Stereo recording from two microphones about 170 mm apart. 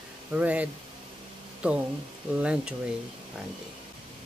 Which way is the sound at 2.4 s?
5° right (ahead or behind).